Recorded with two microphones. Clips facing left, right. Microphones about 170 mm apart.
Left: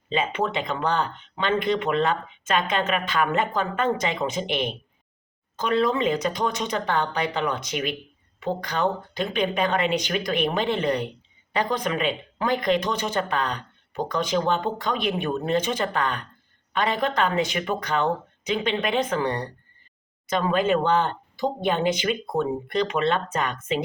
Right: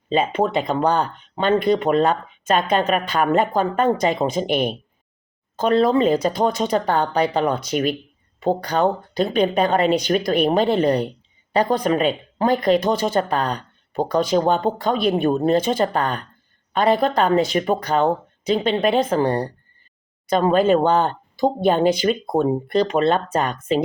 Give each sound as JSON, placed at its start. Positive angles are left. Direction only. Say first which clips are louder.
{"t": 0.1, "sound": "speech", "louder": "right 6 dB", "side_deg": -40}